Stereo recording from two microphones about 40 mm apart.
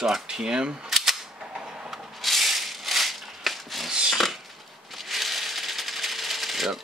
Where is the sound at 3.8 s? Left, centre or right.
Centre.